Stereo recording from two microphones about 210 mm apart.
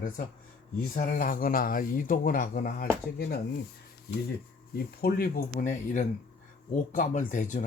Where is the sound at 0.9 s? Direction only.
40° left (ahead or behind).